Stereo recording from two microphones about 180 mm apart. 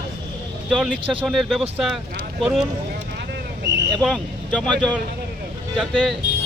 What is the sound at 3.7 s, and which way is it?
Vehicle, 75° right (ahead or behind).